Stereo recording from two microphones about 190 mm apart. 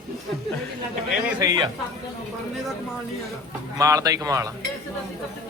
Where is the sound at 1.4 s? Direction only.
20° right (ahead or behind).